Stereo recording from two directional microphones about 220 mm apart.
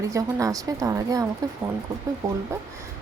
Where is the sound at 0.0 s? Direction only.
15° right (ahead or behind).